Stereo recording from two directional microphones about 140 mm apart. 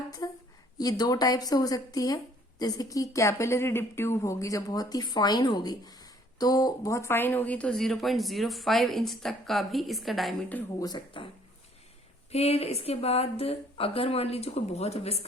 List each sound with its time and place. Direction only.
0.2 s speech: 25° left (ahead or behind); by 10.3 s centre (ahead or behind)
10.8 s speech: 30° left (ahead or behind)
12.3 s speech: 45° left (ahead or behind)